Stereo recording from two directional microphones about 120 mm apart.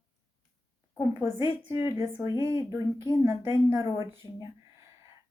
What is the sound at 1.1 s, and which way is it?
A woman's voice, 25° right (ahead or behind).